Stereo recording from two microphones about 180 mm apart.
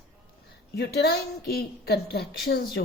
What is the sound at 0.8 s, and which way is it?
A woman's voice, 65° left (ahead or behind).